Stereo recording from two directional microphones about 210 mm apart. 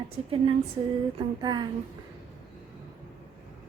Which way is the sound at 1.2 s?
20° right (ahead or behind).